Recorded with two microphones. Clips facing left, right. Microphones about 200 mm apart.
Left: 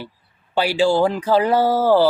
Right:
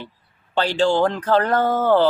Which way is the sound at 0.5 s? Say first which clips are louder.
Left 1 dB; 10° left (ahead or behind).